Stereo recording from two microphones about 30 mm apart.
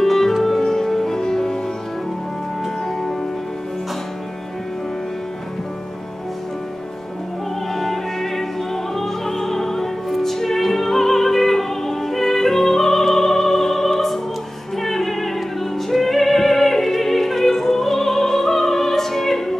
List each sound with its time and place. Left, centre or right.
0.0 s music: centre
2.6 s music: centre
7.7 s opera: centre
10.2 s music: centre